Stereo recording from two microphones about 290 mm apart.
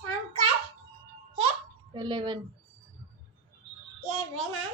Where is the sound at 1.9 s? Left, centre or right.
Centre.